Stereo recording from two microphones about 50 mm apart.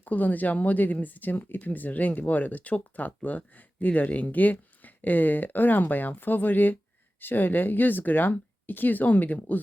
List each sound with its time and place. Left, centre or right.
0.0 s speech: left